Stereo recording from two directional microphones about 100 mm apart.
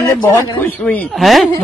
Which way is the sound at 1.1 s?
Centre (ahead or behind).